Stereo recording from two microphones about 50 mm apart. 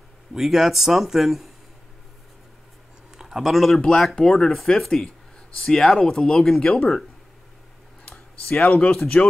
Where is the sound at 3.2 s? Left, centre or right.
Centre.